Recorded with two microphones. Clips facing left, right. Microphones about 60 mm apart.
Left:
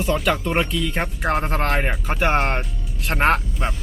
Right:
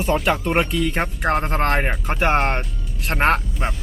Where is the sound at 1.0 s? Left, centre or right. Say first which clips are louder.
Left 1 dB; centre.